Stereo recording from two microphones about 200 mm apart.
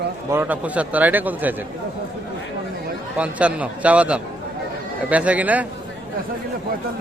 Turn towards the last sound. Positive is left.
turn(degrees=-5)  # may be behind; listen again after turning